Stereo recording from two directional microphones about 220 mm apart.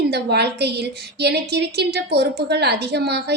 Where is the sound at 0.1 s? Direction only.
50° right (ahead or behind).